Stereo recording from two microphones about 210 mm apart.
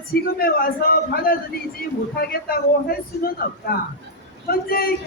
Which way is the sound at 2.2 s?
45° left (ahead or behind).